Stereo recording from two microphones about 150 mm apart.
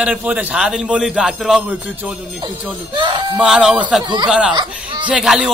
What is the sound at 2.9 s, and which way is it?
Speech, 30° right (ahead or behind).